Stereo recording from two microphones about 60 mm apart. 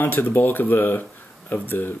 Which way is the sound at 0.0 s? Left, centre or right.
Left.